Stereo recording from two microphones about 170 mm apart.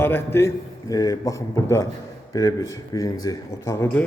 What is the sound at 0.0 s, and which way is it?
A man's voice, 15° left (ahead or behind).